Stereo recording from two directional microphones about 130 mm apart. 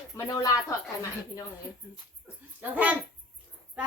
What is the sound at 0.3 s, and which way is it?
Speech, 25° left (ahead or behind).